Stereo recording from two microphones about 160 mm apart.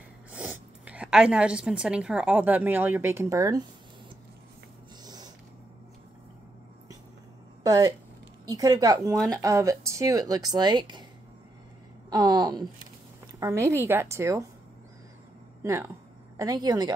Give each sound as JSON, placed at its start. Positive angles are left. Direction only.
{"t": 0.3, "sound": "a woman's voice", "side_deg": -10}
{"t": 5.0, "sound": "a sound", "side_deg": -25}
{"t": 7.6, "sound": "speech", "side_deg": -25}
{"t": 12.1, "sound": "a woman's voice", "side_deg": -25}
{"t": 15.6, "sound": "speech", "side_deg": -15}